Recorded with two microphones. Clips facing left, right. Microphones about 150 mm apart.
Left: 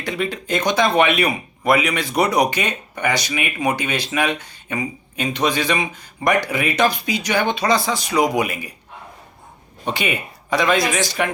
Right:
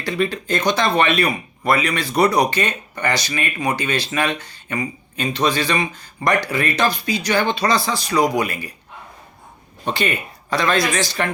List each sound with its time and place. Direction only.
0.0 s speech: 20° left (ahead or behind)
9.8 s speech: 15° left (ahead or behind)